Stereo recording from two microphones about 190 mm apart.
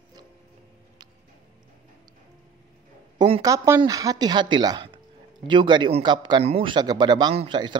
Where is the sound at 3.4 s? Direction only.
15° right (ahead or behind).